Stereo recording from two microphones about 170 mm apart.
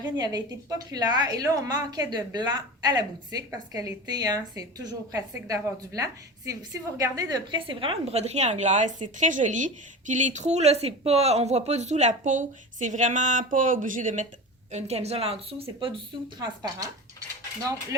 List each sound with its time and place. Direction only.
0.0 s a woman's voice: 25° right (ahead or behind)